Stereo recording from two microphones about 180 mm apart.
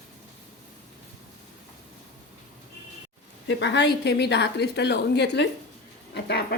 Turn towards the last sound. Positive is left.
turn(degrees=65)  # may be behind; listen again after turning